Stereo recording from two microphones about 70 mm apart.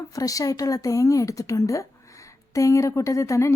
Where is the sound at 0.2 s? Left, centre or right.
Left.